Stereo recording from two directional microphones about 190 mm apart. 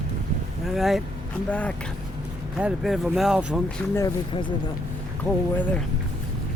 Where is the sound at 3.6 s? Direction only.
10° left (ahead or behind).